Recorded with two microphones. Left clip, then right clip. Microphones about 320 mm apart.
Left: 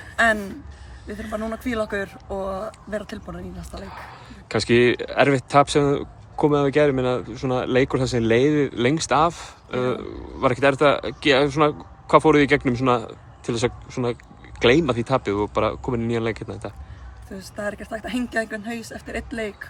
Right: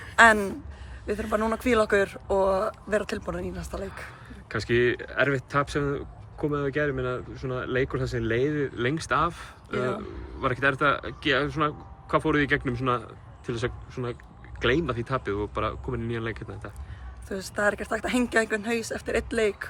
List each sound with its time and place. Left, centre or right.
1.3 s speech: right
1.8 s speech: centre
2.6 s speech: right
4.4 s speech: centre
17.4 s speech: centre